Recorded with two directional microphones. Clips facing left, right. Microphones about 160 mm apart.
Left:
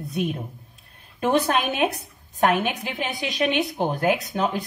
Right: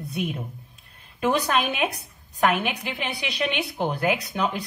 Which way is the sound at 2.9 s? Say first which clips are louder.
Left 2 dB; 45° left (ahead or behind).